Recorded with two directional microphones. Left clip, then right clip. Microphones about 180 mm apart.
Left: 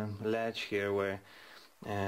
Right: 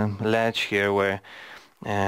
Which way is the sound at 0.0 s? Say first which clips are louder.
Right 11 dB; 55° right (ahead or behind).